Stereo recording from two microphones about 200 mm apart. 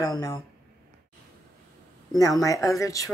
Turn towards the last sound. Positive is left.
turn(degrees=15)  # may be behind; listen again after turning